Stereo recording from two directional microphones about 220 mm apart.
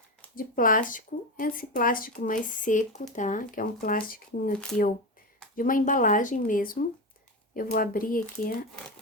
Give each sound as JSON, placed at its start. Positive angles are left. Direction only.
{"t": 0.3, "sound": "speech", "side_deg": 40}